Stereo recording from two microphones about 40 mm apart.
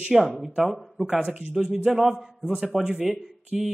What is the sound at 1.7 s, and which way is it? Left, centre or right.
Speech, right.